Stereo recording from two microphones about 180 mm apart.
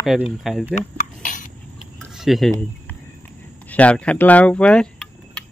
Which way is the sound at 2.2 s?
Centre (ahead or behind).